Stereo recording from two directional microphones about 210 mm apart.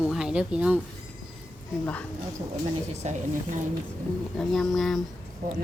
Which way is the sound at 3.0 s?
35° right (ahead or behind).